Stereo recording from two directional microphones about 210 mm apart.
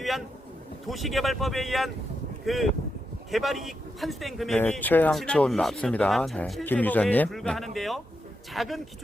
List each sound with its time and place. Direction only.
0.9 s speech: centre (ahead or behind)